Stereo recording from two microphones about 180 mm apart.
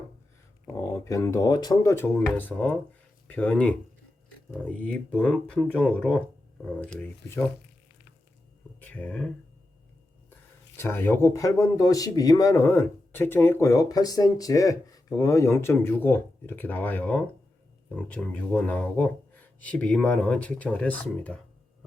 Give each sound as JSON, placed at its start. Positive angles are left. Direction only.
{"t": 1.0, "sound": "speech", "side_deg": 15}
{"t": 4.8, "sound": "speech", "side_deg": 5}
{"t": 8.8, "sound": "speech", "side_deg": 10}
{"t": 10.8, "sound": "speech", "side_deg": 15}